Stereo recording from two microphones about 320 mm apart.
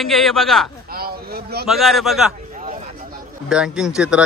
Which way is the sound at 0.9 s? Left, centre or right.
Right.